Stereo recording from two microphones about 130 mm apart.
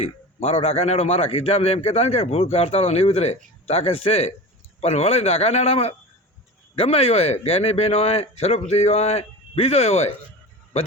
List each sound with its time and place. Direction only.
0.4 s a man's voice: 50° left (ahead or behind)